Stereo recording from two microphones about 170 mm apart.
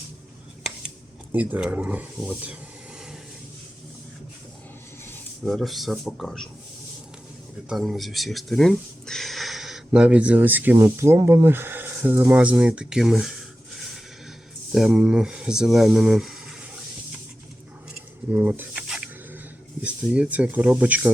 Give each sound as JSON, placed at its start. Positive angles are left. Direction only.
{"t": 1.3, "sound": "speech", "side_deg": -10}
{"t": 5.5, "sound": "speech", "side_deg": 0}
{"t": 7.7, "sound": "speech", "side_deg": 0}
{"t": 14.7, "sound": "speech", "side_deg": 0}
{"t": 18.3, "sound": "a sound", "side_deg": -10}
{"t": 19.8, "sound": "speech", "side_deg": -5}